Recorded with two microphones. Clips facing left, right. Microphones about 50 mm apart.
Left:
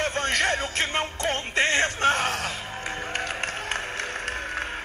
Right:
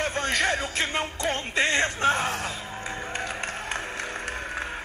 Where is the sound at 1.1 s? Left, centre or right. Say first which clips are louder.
Left 1 dB; left.